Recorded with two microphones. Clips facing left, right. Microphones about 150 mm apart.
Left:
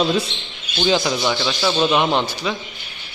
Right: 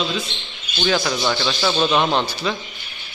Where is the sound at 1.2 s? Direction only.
5° left (ahead or behind).